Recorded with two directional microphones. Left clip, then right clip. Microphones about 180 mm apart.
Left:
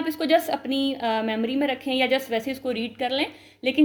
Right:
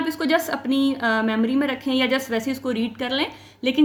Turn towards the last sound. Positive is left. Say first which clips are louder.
# right 2 dB
turn(degrees=-20)  # may be behind; listen again after turning